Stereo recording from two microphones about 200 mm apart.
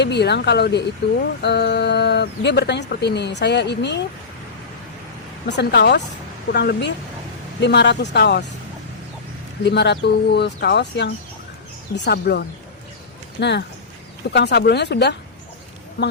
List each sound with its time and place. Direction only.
0.0 s speech: 55° left (ahead or behind)
5.5 s speech: 60° left (ahead or behind)
9.6 s speech: 55° left (ahead or behind)